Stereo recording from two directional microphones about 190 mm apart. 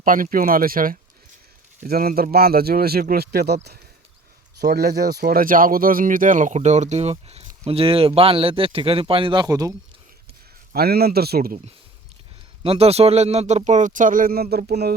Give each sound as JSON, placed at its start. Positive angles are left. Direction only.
{"t": 0.0, "sound": "speech", "side_deg": -45}
{"t": 10.7, "sound": "speech", "side_deg": -55}
{"t": 12.6, "sound": "a man's voice", "side_deg": -30}